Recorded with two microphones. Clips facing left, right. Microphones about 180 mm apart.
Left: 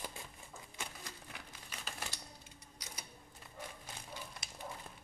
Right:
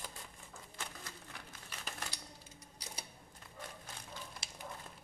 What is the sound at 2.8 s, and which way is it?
Sewing machine, 30° right (ahead or behind).